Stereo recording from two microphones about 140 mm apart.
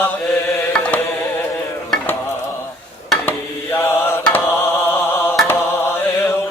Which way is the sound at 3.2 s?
15° left (ahead or behind).